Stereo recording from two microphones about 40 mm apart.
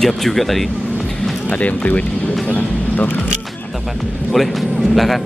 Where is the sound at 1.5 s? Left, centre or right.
Left.